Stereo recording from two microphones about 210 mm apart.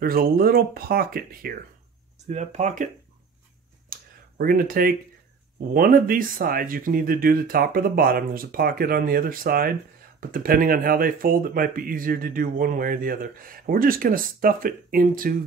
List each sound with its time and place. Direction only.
0.0 s speech: 45° right (ahead or behind)
2.2 s speech: 35° right (ahead or behind)
3.9 s a sound: 45° right (ahead or behind)
5.7 s speech: 45° right (ahead or behind)